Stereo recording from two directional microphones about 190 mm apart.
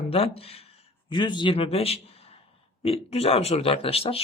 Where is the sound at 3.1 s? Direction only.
30° left (ahead or behind).